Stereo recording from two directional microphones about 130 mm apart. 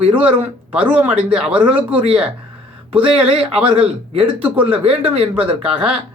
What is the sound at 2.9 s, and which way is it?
Speech, 45° right (ahead or behind).